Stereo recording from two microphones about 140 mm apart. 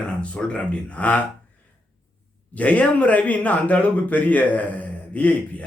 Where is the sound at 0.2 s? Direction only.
10° left (ahead or behind).